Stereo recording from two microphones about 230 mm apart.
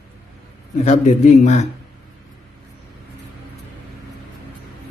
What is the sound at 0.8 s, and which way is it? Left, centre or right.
Speech, left.